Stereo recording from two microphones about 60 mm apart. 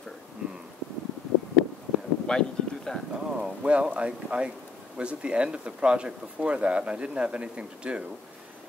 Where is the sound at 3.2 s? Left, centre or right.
Centre.